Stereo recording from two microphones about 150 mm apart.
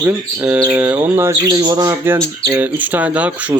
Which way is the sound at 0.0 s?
10° right (ahead or behind).